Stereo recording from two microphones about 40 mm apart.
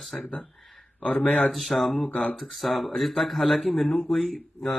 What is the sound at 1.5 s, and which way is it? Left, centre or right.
Speech, centre.